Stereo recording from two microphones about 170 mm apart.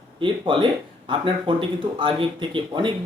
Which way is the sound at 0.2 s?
30° right (ahead or behind).